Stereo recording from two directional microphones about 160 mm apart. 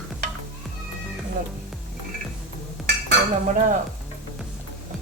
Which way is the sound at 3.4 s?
50° right (ahead or behind).